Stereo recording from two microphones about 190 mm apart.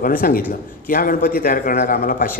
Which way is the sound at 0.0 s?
50° left (ahead or behind).